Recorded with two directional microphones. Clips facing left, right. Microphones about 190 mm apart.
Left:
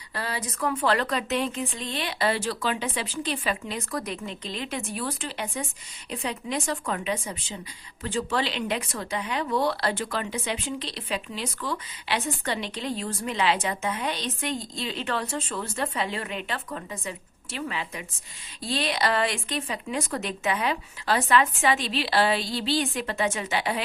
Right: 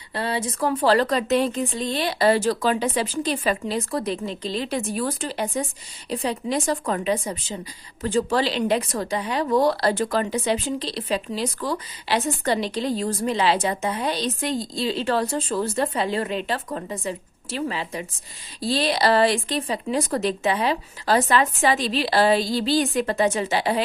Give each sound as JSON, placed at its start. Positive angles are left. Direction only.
{"t": 0.1, "sound": "speech", "side_deg": -30}